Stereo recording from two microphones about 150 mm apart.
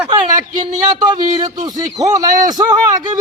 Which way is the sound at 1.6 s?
25° right (ahead or behind).